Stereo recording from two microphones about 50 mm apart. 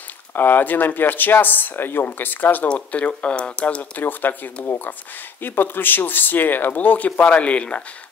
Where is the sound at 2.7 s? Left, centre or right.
Left.